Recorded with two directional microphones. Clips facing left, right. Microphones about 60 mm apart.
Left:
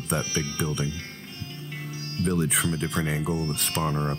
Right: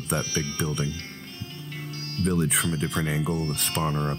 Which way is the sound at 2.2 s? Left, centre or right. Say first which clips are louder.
Even; centre.